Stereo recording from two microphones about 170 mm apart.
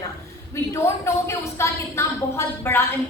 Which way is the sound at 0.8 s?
15° left (ahead or behind).